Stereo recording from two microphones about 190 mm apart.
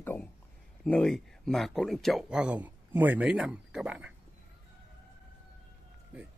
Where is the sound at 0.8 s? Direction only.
5° left (ahead or behind).